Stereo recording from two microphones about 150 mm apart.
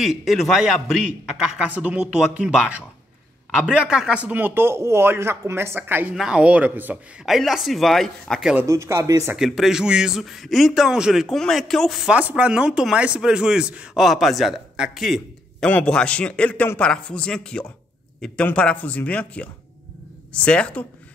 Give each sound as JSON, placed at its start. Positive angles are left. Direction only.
{"t": 0.0, "sound": "a man's voice", "side_deg": 0}
{"t": 8.6, "sound": "speech", "side_deg": -20}
{"t": 9.4, "sound": "a man's voice", "side_deg": -5}